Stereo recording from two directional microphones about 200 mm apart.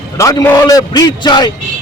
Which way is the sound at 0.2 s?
15° left (ahead or behind).